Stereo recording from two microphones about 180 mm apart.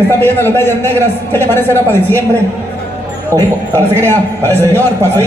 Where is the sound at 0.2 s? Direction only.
10° left (ahead or behind).